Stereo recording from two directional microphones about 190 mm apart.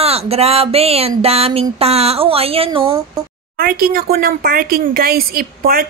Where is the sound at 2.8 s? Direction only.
15° right (ahead or behind).